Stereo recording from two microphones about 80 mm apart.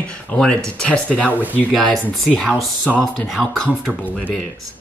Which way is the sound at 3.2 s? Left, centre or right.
Centre.